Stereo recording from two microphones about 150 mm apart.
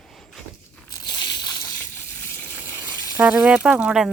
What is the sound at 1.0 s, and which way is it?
Slosh, 25° left (ahead or behind).